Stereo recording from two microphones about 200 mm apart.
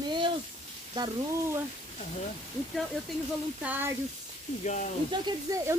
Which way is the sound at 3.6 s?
10° right (ahead or behind).